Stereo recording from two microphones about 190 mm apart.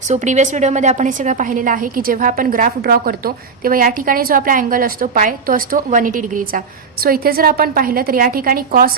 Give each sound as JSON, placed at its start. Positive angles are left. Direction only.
{"t": 0.1, "sound": "a woman's voice", "side_deg": -40}